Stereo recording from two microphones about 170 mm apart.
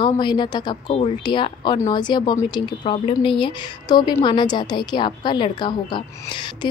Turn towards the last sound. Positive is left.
turn(degrees=25)  # may be behind; listen again after turning